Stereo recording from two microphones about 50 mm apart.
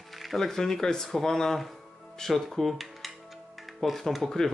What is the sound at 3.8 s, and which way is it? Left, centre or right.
Speech, centre.